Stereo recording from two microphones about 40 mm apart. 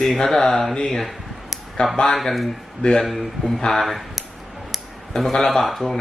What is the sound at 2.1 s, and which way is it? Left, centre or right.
Speech, centre.